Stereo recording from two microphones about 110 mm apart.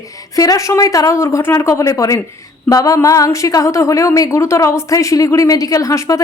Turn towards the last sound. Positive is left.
turn(degrees=30)  # may be behind; listen again after turning